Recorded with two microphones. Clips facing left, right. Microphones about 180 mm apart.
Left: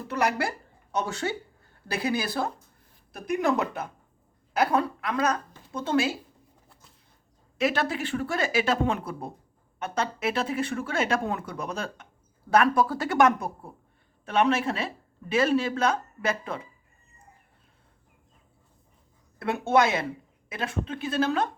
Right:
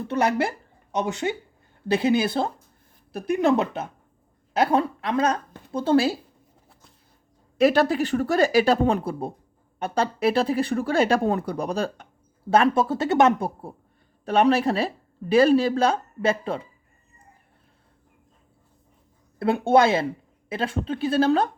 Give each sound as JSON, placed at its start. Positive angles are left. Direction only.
{"t": 0.0, "sound": "a woman's voice", "side_deg": -25}
{"t": 7.6, "sound": "a woman's voice", "side_deg": -35}
{"t": 19.4, "sound": "a woman's voice", "side_deg": -30}